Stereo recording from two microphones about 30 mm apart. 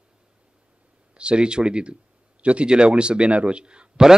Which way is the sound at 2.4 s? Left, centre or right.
Right.